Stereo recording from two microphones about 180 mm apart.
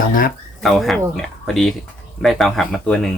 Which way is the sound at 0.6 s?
Centre (ahead or behind).